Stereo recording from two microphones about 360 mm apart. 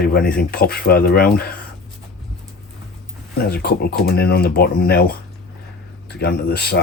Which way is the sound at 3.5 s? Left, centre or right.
Left.